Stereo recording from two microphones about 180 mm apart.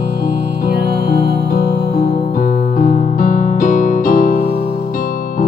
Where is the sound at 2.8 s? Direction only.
50° left (ahead or behind).